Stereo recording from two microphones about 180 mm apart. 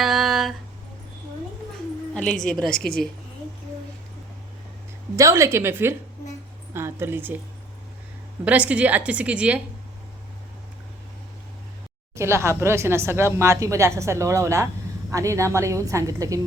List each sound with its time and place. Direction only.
0.0 s a sound: centre (ahead or behind)
2.1 s a woman's voice: 5° left (ahead or behind)
5.1 s speech: 15° right (ahead or behind)
8.4 s speech: 10° right (ahead or behind)
12.1 s speech: 15° right (ahead or behind)